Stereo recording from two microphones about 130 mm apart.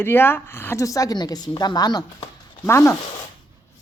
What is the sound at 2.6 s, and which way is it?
Speech, 20° left (ahead or behind).